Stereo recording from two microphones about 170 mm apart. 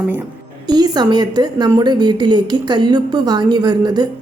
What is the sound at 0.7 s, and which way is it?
A woman's voice, 25° right (ahead or behind).